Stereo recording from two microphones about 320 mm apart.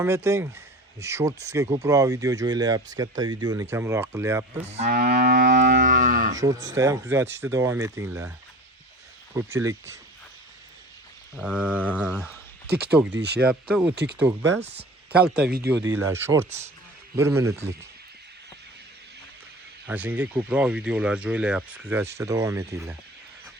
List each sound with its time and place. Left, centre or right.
0.0 s speech: centre
4.6 s moo: right
6.3 s speech: centre
9.3 s speech: centre
11.3 s speech: centre
13.1 s speech: right
13.4 s speech: centre
13.9 s speech: right
16.0 s speech: centre
16.5 s moo: right
17.2 s speech: centre
19.9 s speech: centre